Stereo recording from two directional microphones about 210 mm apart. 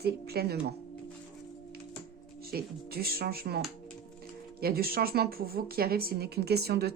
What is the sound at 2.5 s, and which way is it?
Speech, 45° right (ahead or behind).